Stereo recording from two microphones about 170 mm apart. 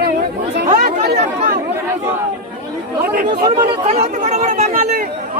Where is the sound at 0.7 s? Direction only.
60° right (ahead or behind).